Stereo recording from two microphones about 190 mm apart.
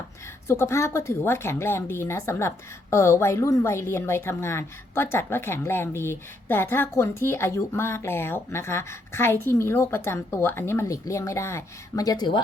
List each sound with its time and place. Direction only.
0.4 s a woman's voice: 15° left (ahead or behind)